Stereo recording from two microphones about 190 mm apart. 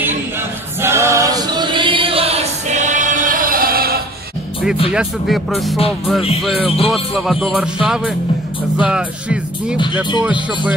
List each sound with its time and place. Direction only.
0.7 s choir: 15° right (ahead or behind); by 4.0 s 50° right (ahead or behind)
4.9 s speech: centre (ahead or behind)